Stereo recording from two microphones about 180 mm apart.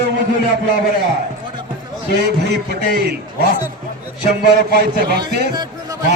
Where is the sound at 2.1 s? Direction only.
65° right (ahead or behind).